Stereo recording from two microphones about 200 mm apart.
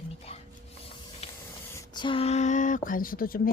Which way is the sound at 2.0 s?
25° left (ahead or behind).